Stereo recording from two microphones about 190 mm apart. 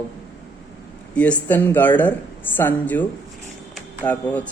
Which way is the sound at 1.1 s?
5° left (ahead or behind).